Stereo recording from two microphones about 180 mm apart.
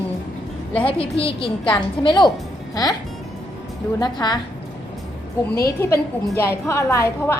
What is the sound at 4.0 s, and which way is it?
Speech, 25° left (ahead or behind).